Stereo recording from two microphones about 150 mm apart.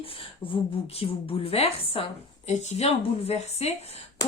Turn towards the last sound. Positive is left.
turn(degrees=45)  # may be behind; listen again after turning